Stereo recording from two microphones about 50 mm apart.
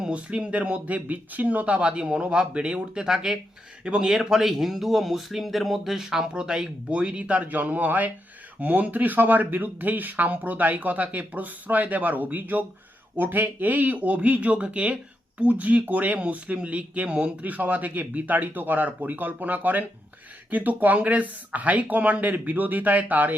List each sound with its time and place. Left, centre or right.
0.1 s a man's voice: right
17.4 s speech: right